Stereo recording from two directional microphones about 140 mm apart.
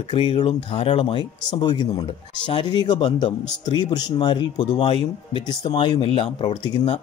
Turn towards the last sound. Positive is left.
turn(degrees=30)  # may be behind; listen again after turning